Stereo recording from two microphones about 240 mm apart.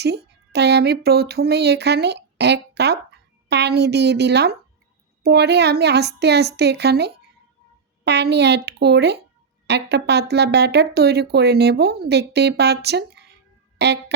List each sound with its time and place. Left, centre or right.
0.0 s speech: right